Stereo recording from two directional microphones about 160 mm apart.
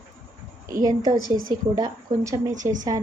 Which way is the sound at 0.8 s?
25° right (ahead or behind).